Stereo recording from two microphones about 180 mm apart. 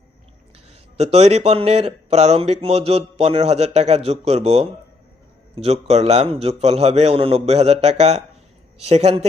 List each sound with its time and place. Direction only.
0.9 s speech: 35° right (ahead or behind)